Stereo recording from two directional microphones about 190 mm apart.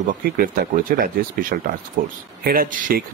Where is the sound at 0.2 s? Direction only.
50° right (ahead or behind).